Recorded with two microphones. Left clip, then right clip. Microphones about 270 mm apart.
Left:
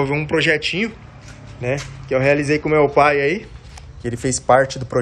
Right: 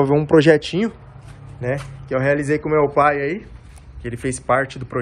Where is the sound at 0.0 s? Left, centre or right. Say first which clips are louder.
Right 4 dB; centre.